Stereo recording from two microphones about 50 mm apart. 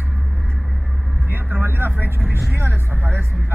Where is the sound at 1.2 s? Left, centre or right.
Right.